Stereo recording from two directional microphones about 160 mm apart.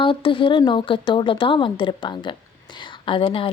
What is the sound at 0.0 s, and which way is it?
A woman's voice, 30° left (ahead or behind).